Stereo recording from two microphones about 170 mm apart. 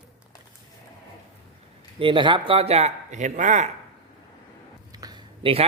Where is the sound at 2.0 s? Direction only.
30° right (ahead or behind); by 3.7 s 45° right (ahead or behind).